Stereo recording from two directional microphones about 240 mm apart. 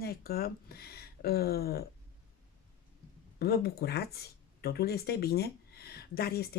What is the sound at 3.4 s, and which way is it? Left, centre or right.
Speech, left.